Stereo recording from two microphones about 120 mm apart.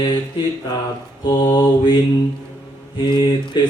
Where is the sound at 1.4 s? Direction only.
40° left (ahead or behind).